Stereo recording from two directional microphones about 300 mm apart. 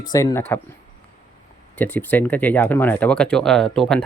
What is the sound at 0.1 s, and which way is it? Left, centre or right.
Speech, centre.